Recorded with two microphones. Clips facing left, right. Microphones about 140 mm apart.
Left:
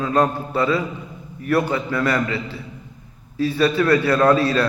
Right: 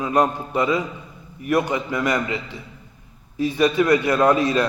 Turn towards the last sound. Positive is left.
turn(degrees=-15)  # may be behind; listen again after turning